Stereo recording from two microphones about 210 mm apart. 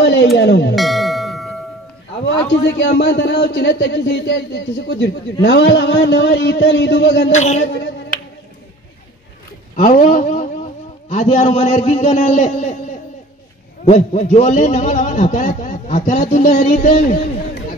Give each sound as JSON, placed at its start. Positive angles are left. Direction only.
{"t": 0.0, "sound": "music", "side_deg": 60}
{"t": 0.4, "sound": "speech", "side_deg": 55}
{"t": 0.7, "sound": "music", "side_deg": 0}
{"t": 2.8, "sound": "speech", "side_deg": 55}
{"t": 7.3, "sound": "a man's voice", "side_deg": 35}
{"t": 9.8, "sound": "a man's voice", "side_deg": 40}
{"t": 13.8, "sound": "a man's voice", "side_deg": 35}